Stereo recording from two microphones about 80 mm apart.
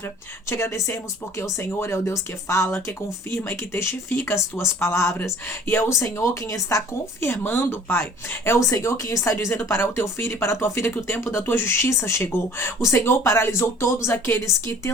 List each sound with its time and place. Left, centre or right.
0.5 s speech: left